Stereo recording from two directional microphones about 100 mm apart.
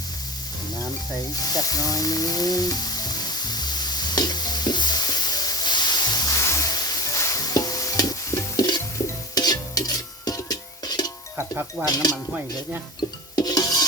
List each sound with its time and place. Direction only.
1.3 s sizzle: 40° left (ahead or behind)
9.3 s stir: 40° left (ahead or behind)
11.3 s speech: 25° right (ahead or behind)
13.3 s filing: 40° left (ahead or behind)